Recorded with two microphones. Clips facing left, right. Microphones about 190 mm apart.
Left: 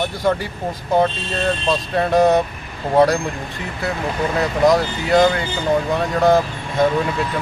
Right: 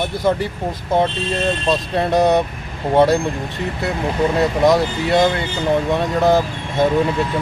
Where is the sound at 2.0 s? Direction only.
Centre (ahead or behind).